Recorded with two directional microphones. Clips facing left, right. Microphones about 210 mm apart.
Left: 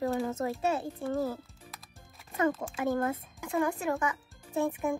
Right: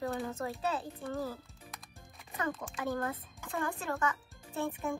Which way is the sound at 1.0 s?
45° left (ahead or behind).